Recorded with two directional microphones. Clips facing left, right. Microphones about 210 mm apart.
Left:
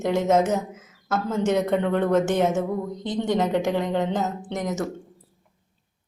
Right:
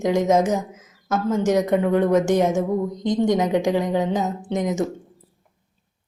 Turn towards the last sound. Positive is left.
turn(degrees=-15)  # may be behind; listen again after turning